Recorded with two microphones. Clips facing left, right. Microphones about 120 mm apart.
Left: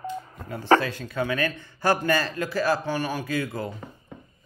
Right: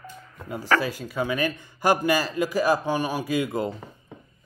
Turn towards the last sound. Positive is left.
turn(degrees=-15)  # may be behind; listen again after turning